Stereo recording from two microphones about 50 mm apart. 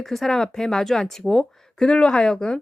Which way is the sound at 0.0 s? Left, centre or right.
Centre.